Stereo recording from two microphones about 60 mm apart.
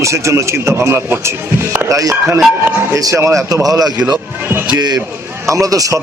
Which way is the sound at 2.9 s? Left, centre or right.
Right.